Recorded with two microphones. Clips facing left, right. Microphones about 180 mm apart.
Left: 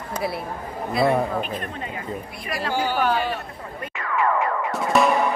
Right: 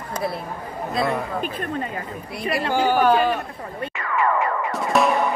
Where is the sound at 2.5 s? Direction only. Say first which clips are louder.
Right 4 dB; 55° right (ahead or behind).